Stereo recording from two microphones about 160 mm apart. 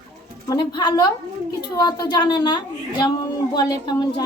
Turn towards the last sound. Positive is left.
turn(degrees=25)  # may be behind; listen again after turning